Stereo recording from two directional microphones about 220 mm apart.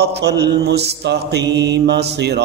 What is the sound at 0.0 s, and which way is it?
Mantra, 50° right (ahead or behind).